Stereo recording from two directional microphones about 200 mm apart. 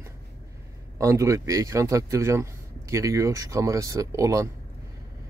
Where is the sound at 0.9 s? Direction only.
15° right (ahead or behind).